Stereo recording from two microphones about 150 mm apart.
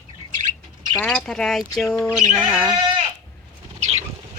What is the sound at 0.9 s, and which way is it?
Speech, 5° left (ahead or behind).